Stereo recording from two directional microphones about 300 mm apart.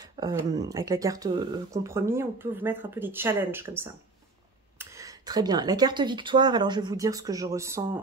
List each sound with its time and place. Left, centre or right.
0.2 s speech: centre